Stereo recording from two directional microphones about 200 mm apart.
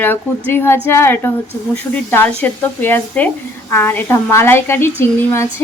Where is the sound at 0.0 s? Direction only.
10° left (ahead or behind).